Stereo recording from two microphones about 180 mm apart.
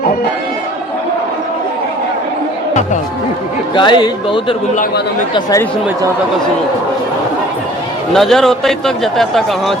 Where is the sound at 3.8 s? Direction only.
25° left (ahead or behind).